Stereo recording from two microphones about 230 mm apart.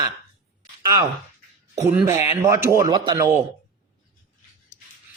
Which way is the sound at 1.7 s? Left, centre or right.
Centre.